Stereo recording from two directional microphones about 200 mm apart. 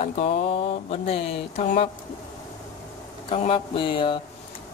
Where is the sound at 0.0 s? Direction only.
30° left (ahead or behind).